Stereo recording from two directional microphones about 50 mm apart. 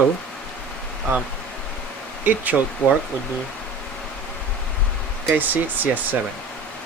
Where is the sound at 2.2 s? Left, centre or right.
Right.